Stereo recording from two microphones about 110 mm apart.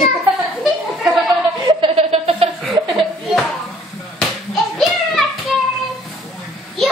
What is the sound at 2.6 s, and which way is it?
Chuckle, centre (ahead or behind).